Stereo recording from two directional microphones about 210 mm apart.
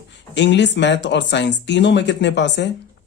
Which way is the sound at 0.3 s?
55° left (ahead or behind).